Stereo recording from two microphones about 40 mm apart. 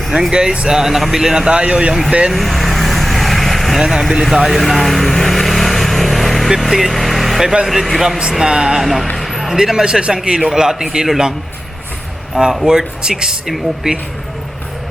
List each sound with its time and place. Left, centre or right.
0.3 s speech: right
0.7 s speech: centre
1.5 s speech: right
2.3 s vehicle: centre
3.8 s speech: centre
4.1 s vehicle: centre
6.6 s speech: centre
7.4 s speech: centre
8.8 s speech: centre
9.1 s a sound: centre
9.5 s speech: centre
12.6 s speech: centre